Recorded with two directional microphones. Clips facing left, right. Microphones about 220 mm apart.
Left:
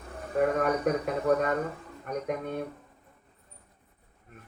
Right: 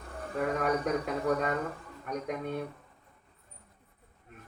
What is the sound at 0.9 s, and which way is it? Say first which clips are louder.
Speech: left 3 dB; 55° left (ahead or behind).